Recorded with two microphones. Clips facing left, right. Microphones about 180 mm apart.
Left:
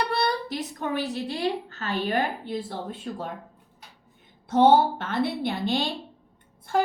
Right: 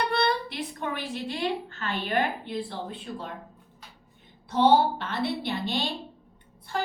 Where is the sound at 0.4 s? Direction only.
40° left (ahead or behind).